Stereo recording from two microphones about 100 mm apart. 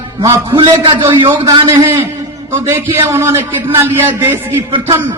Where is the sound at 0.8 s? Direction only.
55° right (ahead or behind).